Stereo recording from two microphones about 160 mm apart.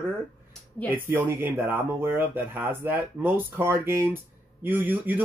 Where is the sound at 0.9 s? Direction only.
15° right (ahead or behind).